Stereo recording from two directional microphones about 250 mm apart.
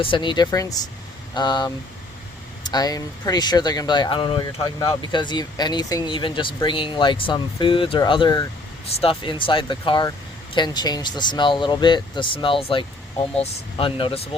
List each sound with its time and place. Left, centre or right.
0.0 s speech: centre